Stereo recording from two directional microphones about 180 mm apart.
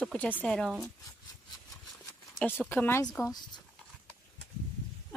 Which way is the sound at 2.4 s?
10° left (ahead or behind).